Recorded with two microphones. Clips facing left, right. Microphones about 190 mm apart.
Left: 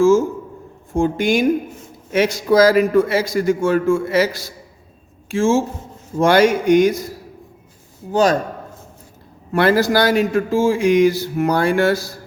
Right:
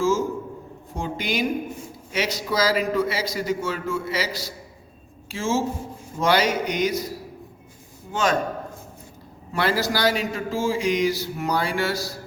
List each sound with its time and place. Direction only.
0.9 s a man's voice: 50° left (ahead or behind)
8.1 s a man's voice: 35° left (ahead or behind)
9.5 s a man's voice: 55° left (ahead or behind)